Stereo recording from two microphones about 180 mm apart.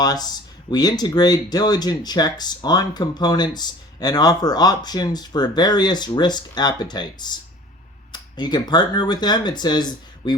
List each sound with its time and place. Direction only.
0.0 s speech: 20° left (ahead or behind)